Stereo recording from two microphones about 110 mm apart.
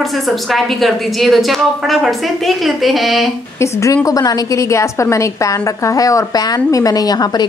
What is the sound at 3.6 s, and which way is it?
A woman's voice, 30° left (ahead or behind).